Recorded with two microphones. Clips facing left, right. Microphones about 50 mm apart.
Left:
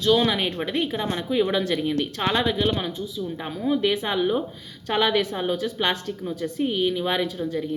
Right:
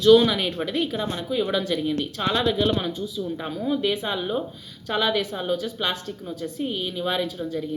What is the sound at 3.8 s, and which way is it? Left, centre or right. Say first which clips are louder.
Speech: left 2 dB; left.